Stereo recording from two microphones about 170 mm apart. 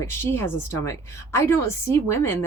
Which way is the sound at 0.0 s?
15° left (ahead or behind).